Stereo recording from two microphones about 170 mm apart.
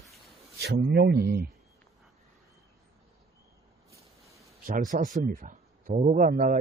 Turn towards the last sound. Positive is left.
turn(degrees=-50)  # may be behind; listen again after turning